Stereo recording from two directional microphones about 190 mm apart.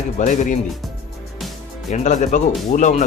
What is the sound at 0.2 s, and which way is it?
Speech, 40° left (ahead or behind).